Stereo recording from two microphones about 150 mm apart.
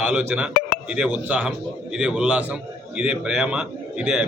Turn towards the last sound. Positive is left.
turn(degrees=-5)  # may be behind; listen again after turning